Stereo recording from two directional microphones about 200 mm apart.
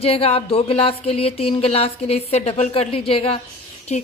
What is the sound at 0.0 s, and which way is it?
A woman's voice, 30° left (ahead or behind).